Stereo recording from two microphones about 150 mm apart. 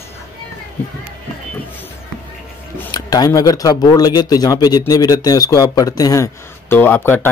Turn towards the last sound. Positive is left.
turn(degrees=15)  # may be behind; listen again after turning